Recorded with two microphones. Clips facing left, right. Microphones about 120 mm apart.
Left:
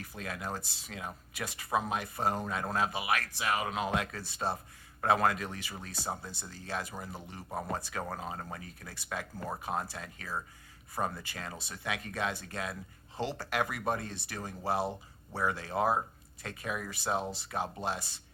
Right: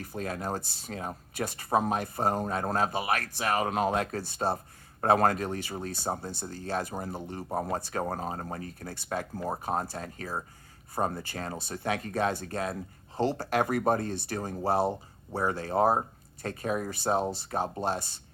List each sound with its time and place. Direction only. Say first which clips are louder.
0.0 s speech: right 6 dB; 35° right (ahead or behind)